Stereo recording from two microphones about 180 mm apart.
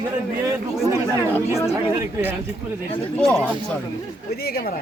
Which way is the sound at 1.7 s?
10° right (ahead or behind).